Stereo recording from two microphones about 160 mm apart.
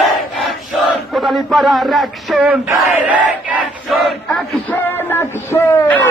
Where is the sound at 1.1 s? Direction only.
Centre (ahead or behind).